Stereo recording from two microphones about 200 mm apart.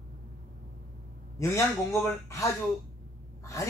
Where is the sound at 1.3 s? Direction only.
15° left (ahead or behind).